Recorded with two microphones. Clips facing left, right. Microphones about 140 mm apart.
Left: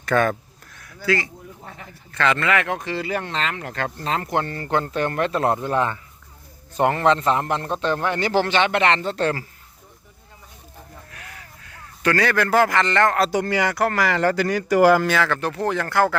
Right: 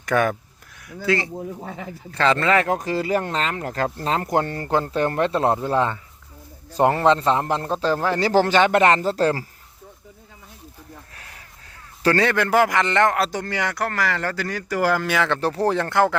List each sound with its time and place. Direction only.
0.0 s speech: 10° right (ahead or behind)
1.0 s speech: 25° right (ahead or behind)
12.0 s speech: 25° right (ahead or behind)
13.3 s speech: 10° left (ahead or behind)
15.2 s speech: 30° right (ahead or behind)